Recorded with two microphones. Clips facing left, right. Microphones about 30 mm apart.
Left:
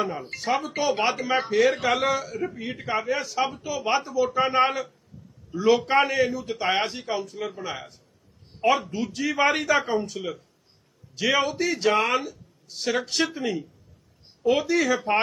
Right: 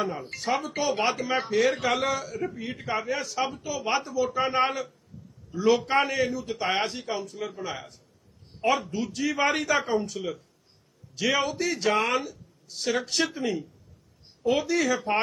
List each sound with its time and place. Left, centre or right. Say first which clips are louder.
0.0 s speech: left 2 dB; centre
5.1 s a sound: even; centre
5.5 s speech: left 2 dB; centre